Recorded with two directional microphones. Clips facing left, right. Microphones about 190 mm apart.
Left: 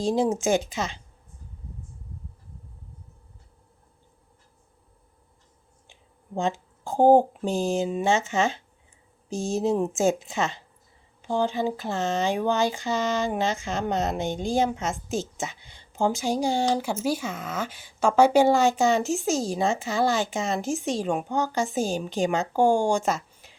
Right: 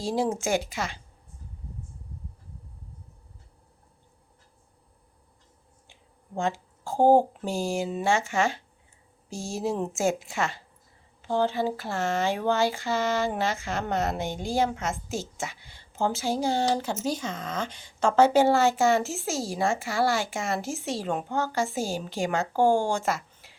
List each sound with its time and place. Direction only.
0.0 s a woman's voice: 20° left (ahead or behind)
5.9 s a woman's voice: 20° left (ahead or behind)